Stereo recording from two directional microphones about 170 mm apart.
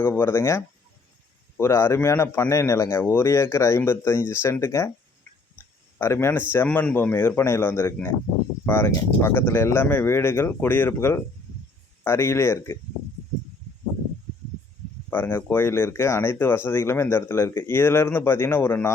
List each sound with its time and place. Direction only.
0.0 s speech: 15° left (ahead or behind)
6.0 s speech: 15° left (ahead or behind)
15.1 s speech: 10° left (ahead or behind)